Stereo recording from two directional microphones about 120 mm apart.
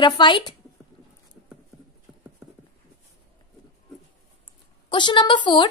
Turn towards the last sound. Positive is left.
turn(degrees=40)  # may be behind; listen again after turning